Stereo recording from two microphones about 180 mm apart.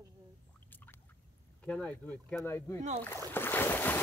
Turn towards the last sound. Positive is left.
turn(degrees=10)  # may be behind; listen again after turning